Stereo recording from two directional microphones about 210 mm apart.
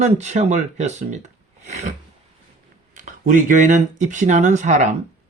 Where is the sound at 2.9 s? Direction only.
40° right (ahead or behind).